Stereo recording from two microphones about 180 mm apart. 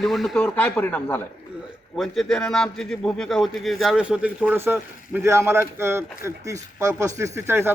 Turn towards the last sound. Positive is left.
turn(degrees=-15)  # may be behind; listen again after turning